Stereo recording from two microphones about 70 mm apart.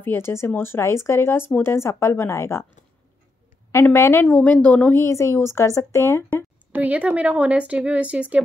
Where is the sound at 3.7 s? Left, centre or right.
Left.